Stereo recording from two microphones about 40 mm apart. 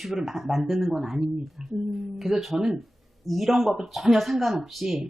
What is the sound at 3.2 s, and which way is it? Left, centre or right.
Speech, centre.